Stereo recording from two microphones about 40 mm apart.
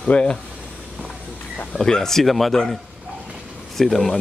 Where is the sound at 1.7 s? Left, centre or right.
Centre.